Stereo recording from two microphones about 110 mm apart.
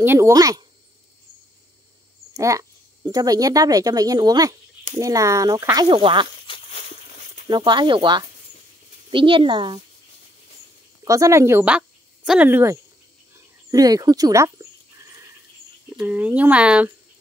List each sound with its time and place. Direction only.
0.0 s speech: 20° right (ahead or behind)
0.3 s speech: 35° right (ahead or behind)
2.3 s a sound: 30° right (ahead or behind)
3.1 s speech: 35° right (ahead or behind)
5.9 s speech: 50° right (ahead or behind)
6.4 s a sound: 55° left (ahead or behind)
7.4 s speech: 45° right (ahead or behind)
11.1 s speech: 30° right (ahead or behind)
13.7 s speech: 35° right (ahead or behind)
16.0 s speech: 15° right (ahead or behind)